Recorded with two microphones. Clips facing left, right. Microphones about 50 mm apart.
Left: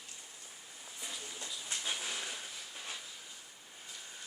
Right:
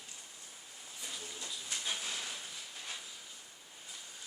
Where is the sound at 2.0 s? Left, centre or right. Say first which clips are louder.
Left 1 dB; left.